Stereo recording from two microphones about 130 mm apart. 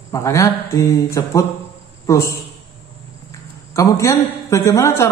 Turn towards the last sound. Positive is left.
turn(degrees=20)  # may be behind; listen again after turning